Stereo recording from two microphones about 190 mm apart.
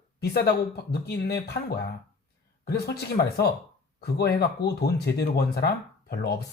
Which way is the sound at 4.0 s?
60° left (ahead or behind).